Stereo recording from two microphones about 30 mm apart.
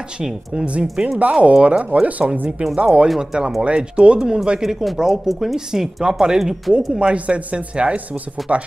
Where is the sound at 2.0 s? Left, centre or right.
Right.